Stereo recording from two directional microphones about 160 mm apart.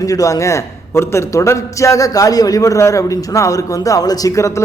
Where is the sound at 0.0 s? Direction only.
20° left (ahead or behind).